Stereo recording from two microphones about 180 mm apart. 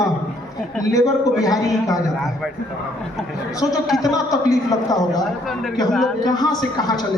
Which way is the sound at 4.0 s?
20° left (ahead or behind).